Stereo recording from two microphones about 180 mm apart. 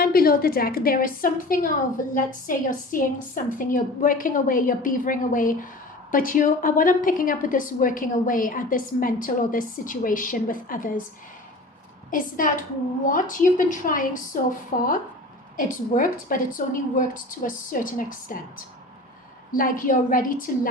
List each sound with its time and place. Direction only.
0.0 s a woman's voice: 55° left (ahead or behind)
12.1 s a woman's voice: 50° left (ahead or behind)
19.5 s a woman's voice: 50° left (ahead or behind)